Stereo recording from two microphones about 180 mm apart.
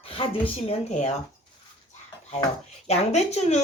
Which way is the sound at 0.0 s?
30° left (ahead or behind).